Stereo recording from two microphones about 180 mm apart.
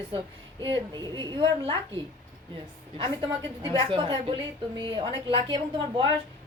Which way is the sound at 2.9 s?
30° right (ahead or behind).